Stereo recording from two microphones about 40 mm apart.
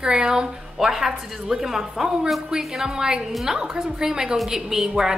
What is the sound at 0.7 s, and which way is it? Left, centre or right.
A woman's voice, centre.